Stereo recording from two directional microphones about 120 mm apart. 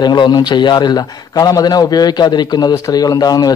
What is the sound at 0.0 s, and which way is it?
A man's voice, 35° left (ahead or behind).